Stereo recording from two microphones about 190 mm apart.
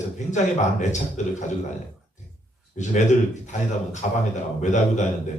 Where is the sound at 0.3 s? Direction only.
40° left (ahead or behind).